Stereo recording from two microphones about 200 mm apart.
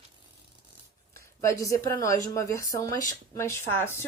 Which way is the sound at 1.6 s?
15° left (ahead or behind).